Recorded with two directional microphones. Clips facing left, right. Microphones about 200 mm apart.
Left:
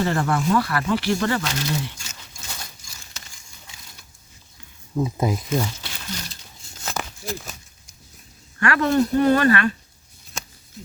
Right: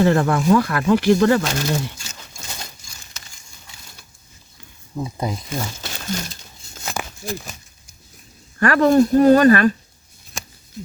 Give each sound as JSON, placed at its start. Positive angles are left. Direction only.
{"t": 0.1, "sound": "speech", "side_deg": -45}
{"t": 5.1, "sound": "speech", "side_deg": 5}
{"t": 5.8, "sound": "crumpling", "side_deg": -45}
{"t": 6.8, "sound": "a sound", "side_deg": -10}
{"t": 8.5, "sound": "speech", "side_deg": -40}